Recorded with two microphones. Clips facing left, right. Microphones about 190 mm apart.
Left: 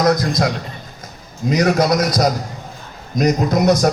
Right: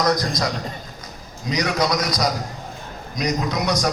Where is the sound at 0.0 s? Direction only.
55° left (ahead or behind).